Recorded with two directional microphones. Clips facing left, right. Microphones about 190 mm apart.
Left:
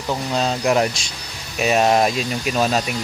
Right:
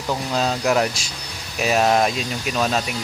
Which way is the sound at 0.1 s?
5° left (ahead or behind).